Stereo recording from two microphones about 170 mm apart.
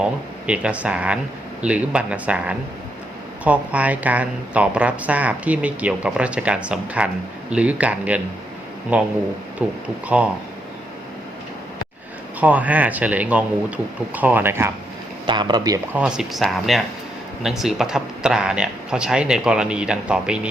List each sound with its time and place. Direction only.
0.0 s speech: 5° right (ahead or behind)
12.4 s speech: 10° right (ahead or behind)
15.3 s speech: 25° right (ahead or behind)
16.0 s speech: 5° right (ahead or behind)